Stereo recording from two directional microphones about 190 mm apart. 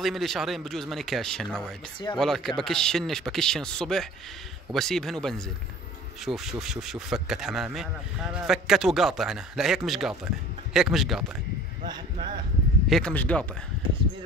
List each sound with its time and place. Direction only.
0.0 s speech: centre (ahead or behind)
11.8 s speech: 25° right (ahead or behind)
12.9 s speech: 5° left (ahead or behind)